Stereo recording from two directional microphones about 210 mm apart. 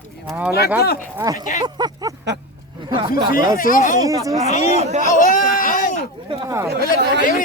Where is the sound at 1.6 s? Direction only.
20° right (ahead or behind).